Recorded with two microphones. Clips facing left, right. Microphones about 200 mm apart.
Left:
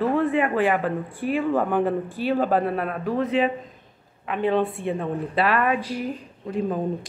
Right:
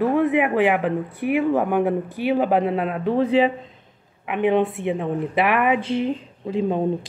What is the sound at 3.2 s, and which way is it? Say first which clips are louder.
Speech: right 4 dB; 30° right (ahead or behind).